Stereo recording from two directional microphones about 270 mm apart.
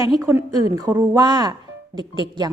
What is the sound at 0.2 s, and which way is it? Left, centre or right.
A woman's voice, centre.